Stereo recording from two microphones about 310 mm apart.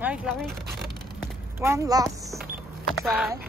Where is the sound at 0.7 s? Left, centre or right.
Right.